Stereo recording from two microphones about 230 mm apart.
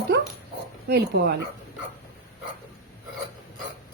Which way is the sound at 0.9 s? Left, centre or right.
Right.